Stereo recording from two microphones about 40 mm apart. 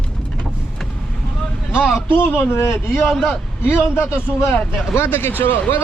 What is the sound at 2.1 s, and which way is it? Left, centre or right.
Speech, left.